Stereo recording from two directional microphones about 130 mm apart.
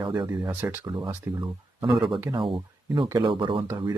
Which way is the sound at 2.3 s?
40° right (ahead or behind).